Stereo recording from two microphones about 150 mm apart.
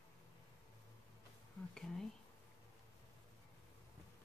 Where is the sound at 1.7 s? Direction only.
5° left (ahead or behind).